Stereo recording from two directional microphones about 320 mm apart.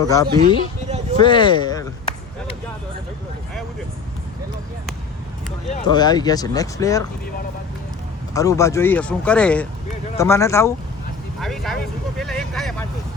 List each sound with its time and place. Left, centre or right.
0.0 s speech: centre
0.9 s a sound: right
1.2 s speech: centre
5.7 s speech: centre
8.3 s speech: centre